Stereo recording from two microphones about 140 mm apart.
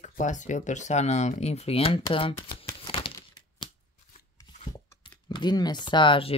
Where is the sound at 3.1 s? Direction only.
30° left (ahead or behind).